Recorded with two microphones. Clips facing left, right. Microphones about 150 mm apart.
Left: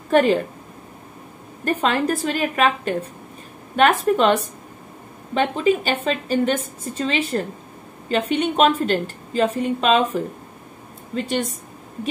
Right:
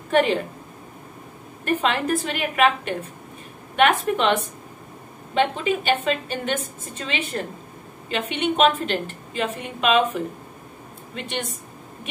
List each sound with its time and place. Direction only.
0.1 s a woman's voice: 40° left (ahead or behind)
1.6 s a woman's voice: 40° left (ahead or behind)